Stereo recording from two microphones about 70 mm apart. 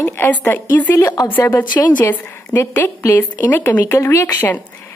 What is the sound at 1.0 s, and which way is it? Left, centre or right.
Speech, left.